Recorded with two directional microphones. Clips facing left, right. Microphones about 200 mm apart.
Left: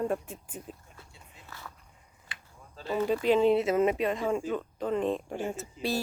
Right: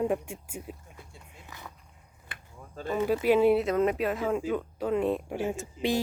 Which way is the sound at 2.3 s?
55° right (ahead or behind).